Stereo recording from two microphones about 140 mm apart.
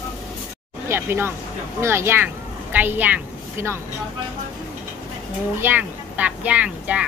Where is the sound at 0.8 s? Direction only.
15° right (ahead or behind).